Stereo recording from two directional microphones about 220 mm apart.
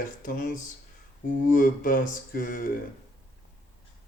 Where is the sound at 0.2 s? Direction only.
40° left (ahead or behind).